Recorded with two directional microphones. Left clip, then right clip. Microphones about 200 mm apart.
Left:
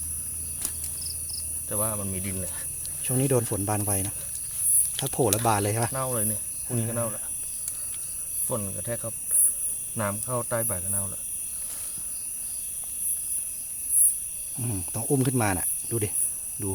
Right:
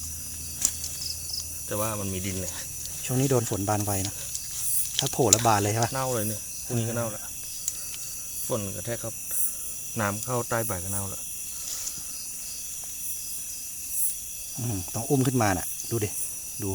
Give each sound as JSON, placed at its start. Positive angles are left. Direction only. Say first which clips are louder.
{"t": 1.7, "sound": "speech", "louder": "right 2 dB", "side_deg": -20}
{"t": 3.0, "sound": "speech", "louder": "even", "side_deg": 0}
{"t": 5.9, "sound": "speech", "louder": "right 2 dB", "side_deg": -20}
{"t": 8.4, "sound": "speech", "louder": "right 1 dB", "side_deg": -20}
{"t": 9.9, "sound": "speech", "louder": "right 1 dB", "side_deg": -30}
{"t": 14.6, "sound": "speech", "louder": "right 1 dB", "side_deg": 0}